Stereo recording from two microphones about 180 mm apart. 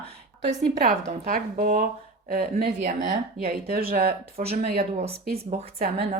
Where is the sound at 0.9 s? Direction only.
50° right (ahead or behind).